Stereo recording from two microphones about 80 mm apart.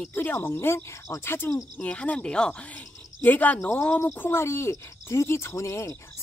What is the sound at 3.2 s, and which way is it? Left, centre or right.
Speech, left.